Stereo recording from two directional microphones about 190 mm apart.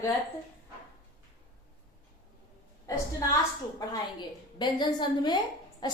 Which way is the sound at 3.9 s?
25° left (ahead or behind).